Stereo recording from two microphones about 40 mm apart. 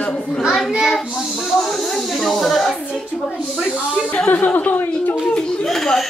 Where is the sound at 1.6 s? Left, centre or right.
Centre.